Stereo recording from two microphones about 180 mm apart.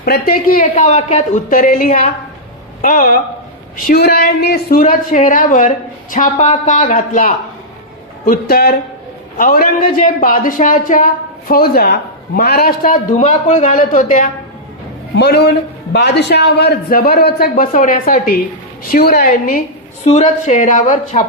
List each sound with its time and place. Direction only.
0.0 s a woman's voice: 55° left (ahead or behind)
15.1 s a man's voice: 65° left (ahead or behind)
17.5 s a woman's voice: 50° left (ahead or behind)
20.1 s a woman's voice: 40° left (ahead or behind)